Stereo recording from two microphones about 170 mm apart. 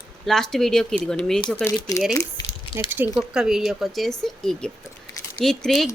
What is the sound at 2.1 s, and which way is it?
Squish, 25° left (ahead or behind).